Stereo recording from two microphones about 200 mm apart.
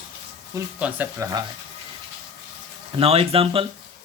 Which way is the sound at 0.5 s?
10° right (ahead or behind).